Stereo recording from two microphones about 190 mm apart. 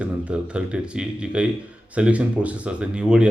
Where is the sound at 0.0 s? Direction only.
5° right (ahead or behind).